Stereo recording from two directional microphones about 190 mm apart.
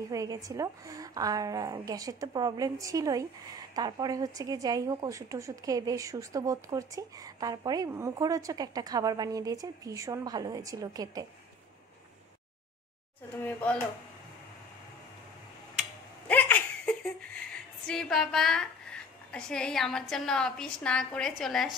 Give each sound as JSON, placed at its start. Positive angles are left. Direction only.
{"t": 0.1, "sound": "speech", "side_deg": -20}
{"t": 13.4, "sound": "speech", "side_deg": 10}
{"t": 16.3, "sound": "laughter", "side_deg": 10}
{"t": 17.8, "sound": "a woman's voice", "side_deg": 5}